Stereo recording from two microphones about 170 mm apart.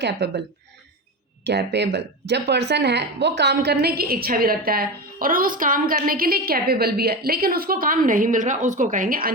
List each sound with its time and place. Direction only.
0.0 s a woman's voice: 90° right
1.5 s speech: 85° right; by 9.3 s 55° right (ahead or behind)